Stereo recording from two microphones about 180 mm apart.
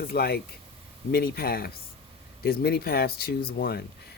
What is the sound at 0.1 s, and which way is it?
Speech, 60° left (ahead or behind).